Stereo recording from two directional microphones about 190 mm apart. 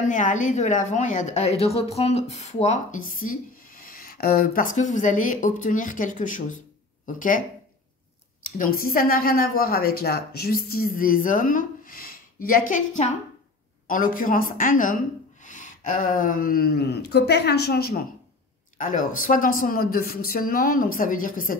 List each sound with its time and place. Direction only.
0.0 s a woman's voice: 40° left (ahead or behind)
8.5 s a woman's voice: 50° left (ahead or behind)
18.8 s a woman's voice: 45° left (ahead or behind)